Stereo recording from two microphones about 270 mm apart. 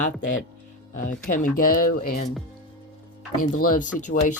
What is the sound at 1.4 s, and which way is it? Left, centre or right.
Speech, left.